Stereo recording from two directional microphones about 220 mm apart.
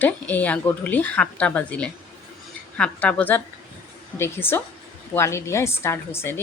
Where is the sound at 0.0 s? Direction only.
5° left (ahead or behind).